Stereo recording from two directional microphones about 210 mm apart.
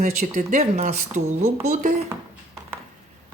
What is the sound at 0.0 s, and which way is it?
Speech, 35° right (ahead or behind).